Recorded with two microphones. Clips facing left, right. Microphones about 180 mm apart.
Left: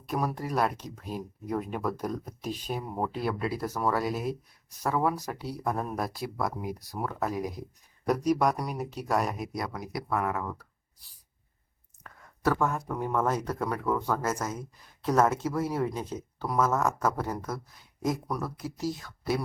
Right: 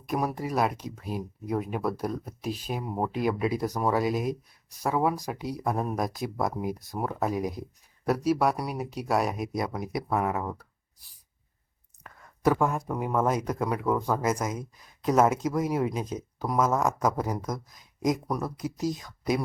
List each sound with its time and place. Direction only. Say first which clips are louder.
0.0 s speech: right 2 dB; 10° right (ahead or behind)
8.0 s speech: right 1 dB; 5° right (ahead or behind)
9.5 s speech: right 4 dB; 20° right (ahead or behind)
12.0 s speech: right 3 dB; 15° right (ahead or behind)